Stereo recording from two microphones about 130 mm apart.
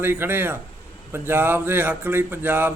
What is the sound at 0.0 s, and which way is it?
Speech, 15° right (ahead or behind).